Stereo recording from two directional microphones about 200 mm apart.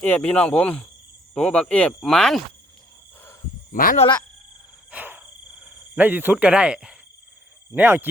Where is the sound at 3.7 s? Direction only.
45° left (ahead or behind).